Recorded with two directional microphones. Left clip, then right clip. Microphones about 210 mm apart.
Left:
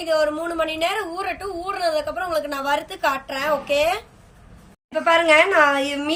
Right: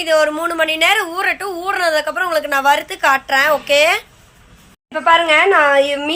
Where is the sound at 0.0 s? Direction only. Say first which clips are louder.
Right 6 dB; centre (ahead or behind).